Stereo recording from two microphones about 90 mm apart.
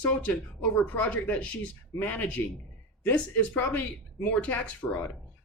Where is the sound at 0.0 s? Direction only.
15° left (ahead or behind).